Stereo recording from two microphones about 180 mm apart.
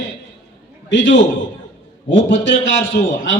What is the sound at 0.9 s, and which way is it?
A man's voice, 90° left.